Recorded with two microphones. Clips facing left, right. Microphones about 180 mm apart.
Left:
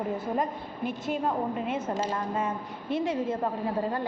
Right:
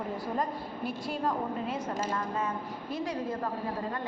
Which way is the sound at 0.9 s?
35° right (ahead or behind).